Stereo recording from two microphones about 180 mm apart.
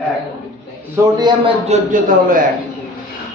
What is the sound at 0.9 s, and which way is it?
Speech, 25° right (ahead or behind).